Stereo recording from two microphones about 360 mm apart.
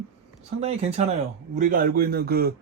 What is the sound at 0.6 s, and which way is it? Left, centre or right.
Speech, centre.